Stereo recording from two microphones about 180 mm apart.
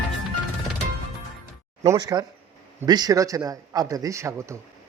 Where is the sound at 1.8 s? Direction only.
20° right (ahead or behind).